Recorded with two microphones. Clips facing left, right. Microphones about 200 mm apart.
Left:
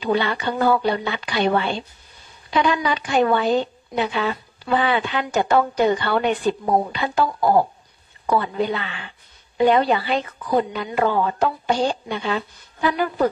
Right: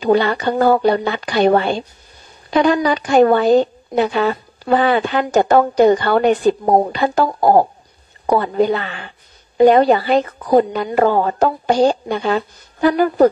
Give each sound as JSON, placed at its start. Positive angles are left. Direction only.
{"t": 0.0, "sound": "a woman's voice", "side_deg": -45}